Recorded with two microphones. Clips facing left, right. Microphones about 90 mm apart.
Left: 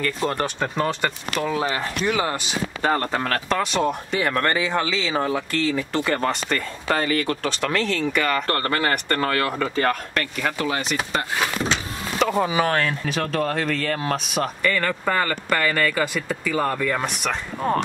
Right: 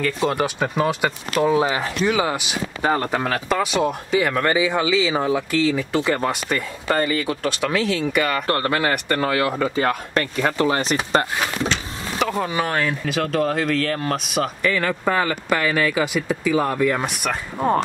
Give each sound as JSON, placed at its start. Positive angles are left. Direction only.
{"t": 0.2, "sound": "speech", "side_deg": -10}
{"t": 10.1, "sound": "speech", "side_deg": -30}
{"t": 12.2, "sound": "speech", "side_deg": 5}